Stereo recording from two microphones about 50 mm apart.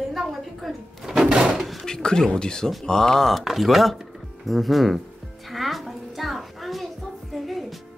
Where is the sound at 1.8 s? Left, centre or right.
Centre.